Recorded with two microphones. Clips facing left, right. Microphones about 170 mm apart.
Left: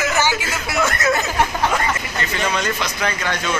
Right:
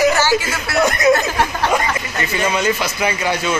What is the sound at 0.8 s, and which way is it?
Speech, 15° right (ahead or behind).